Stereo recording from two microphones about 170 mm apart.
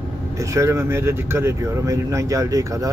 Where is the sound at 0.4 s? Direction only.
15° right (ahead or behind).